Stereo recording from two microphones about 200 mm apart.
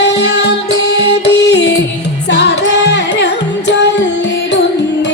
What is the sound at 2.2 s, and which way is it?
Carnatic music, 60° left (ahead or behind).